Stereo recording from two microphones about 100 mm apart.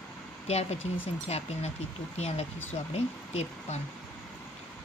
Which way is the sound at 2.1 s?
90° left.